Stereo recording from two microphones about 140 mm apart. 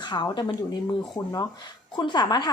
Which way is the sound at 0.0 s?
30° left (ahead or behind).